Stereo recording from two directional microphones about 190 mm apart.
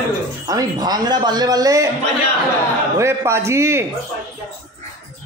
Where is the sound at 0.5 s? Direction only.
20° right (ahead or behind).